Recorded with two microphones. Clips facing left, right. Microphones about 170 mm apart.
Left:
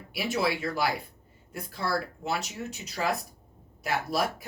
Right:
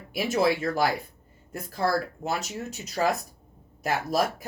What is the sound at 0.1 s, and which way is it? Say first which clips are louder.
Speech: right 5 dB; 45° right (ahead or behind).